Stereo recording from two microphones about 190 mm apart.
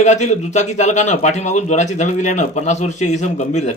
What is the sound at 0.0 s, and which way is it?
A man's voice, 40° left (ahead or behind).